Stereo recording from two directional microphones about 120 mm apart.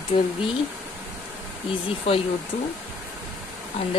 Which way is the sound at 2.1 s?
55° left (ahead or behind).